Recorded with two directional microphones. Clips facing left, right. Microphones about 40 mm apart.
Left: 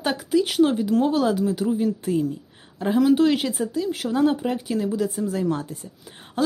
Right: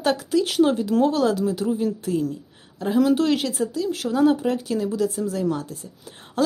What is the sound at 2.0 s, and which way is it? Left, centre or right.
A woman's voice, centre.